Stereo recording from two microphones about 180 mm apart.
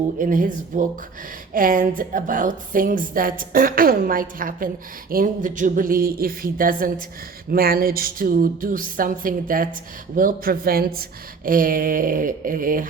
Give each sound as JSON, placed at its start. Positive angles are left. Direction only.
{"t": 0.2, "sound": "a woman's voice", "side_deg": -50}